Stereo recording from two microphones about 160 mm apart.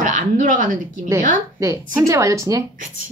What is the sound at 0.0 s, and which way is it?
Speech, 50° right (ahead or behind).